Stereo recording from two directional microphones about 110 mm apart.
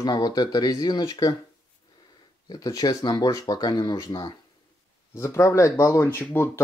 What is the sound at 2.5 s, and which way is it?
Speech, 35° left (ahead or behind).